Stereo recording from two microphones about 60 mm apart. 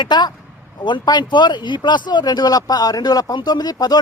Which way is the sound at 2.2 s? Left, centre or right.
Left.